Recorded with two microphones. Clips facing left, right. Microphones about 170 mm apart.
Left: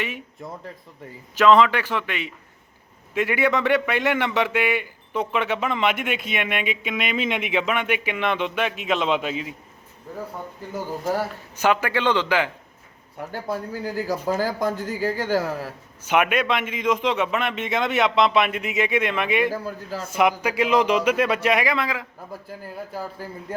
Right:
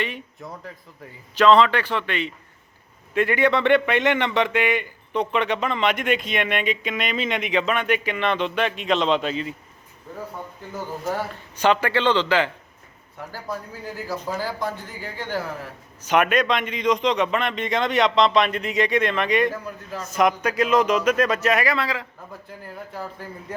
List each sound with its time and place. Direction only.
0.0 s a man's voice: 10° left (ahead or behind)
11.6 s a man's voice: 10° left (ahead or behind)
13.3 s speech: 30° left (ahead or behind)
14.1 s speech: 45° left (ahead or behind)
16.0 s a man's voice: 10° left (ahead or behind)
19.6 s speech: 30° left (ahead or behind)
20.1 s a man's voice: 10° left (ahead or behind)